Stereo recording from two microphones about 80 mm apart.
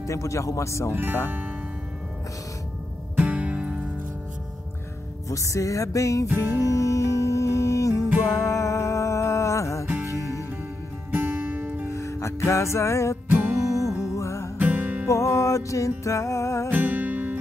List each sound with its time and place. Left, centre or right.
0.0 s music: left
3.2 s music: centre
5.3 s music: left
11.1 s music: right
11.9 s music: left
13.3 s music: right
13.7 s music: centre
14.1 s music: left
14.6 s music: right
15.0 s music: left
16.7 s music: right